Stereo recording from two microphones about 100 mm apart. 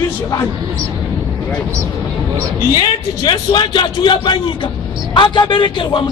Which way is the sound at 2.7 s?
50° left (ahead or behind).